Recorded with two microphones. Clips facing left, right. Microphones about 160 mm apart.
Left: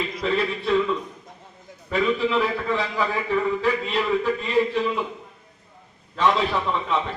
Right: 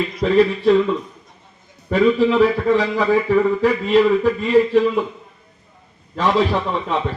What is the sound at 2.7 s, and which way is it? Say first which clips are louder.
A man's voice: right 8 dB; 35° right (ahead or behind).